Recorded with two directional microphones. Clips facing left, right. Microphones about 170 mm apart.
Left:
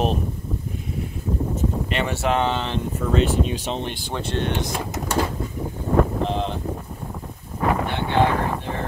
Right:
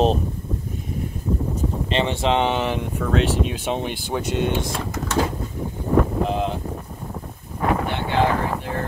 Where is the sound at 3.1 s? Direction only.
Centre (ahead or behind).